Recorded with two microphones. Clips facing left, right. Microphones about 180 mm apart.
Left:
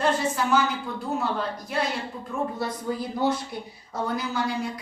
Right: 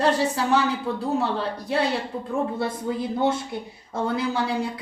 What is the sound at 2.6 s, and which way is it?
A man's voice, 25° right (ahead or behind).